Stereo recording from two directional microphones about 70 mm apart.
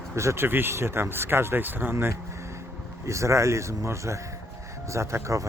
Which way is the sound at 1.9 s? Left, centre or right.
Right.